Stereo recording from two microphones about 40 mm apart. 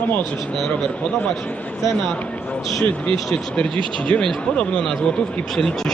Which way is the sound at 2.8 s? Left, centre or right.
Left.